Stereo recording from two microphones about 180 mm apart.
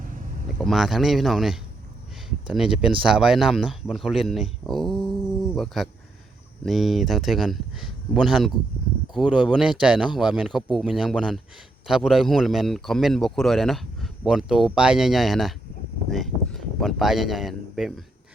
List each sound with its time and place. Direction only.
0.6 s speech: centre (ahead or behind)